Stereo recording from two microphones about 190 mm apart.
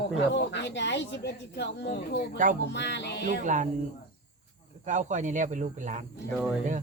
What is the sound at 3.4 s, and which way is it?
Speech, 40° right (ahead or behind).